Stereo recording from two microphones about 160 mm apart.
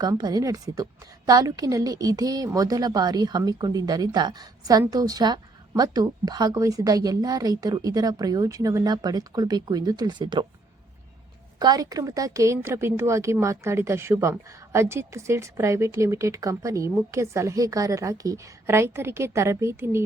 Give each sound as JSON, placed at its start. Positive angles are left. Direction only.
{"t": 0.0, "sound": "a woman's voice", "side_deg": -25}
{"t": 11.6, "sound": "a woman's voice", "side_deg": -25}